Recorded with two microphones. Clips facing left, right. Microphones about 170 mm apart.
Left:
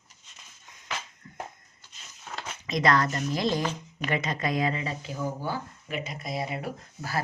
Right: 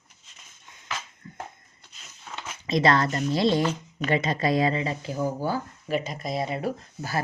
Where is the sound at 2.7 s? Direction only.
30° right (ahead or behind).